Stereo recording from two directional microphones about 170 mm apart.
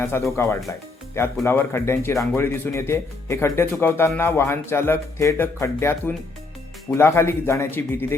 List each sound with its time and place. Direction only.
0.0 s speech: 15° left (ahead or behind)